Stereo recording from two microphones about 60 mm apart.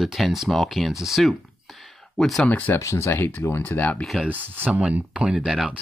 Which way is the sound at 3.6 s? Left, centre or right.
Left.